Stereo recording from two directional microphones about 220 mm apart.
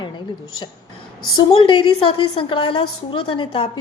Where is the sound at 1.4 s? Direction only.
20° left (ahead or behind).